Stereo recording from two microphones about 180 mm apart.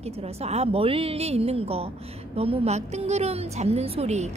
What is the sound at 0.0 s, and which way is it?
A woman's voice, 35° right (ahead or behind).